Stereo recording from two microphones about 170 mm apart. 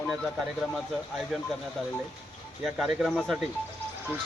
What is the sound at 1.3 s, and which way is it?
Speech, centre (ahead or behind).